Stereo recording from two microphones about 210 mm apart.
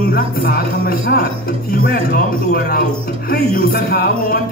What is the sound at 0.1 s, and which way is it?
Speech, 45° left (ahead or behind).